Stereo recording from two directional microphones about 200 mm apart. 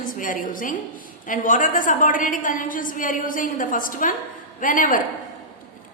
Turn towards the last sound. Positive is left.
turn(degrees=45)  # may be behind; listen again after turning